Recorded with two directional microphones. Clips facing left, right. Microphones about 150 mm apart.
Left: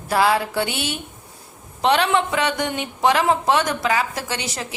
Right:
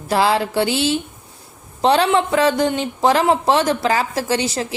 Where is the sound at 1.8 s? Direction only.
30° right (ahead or behind).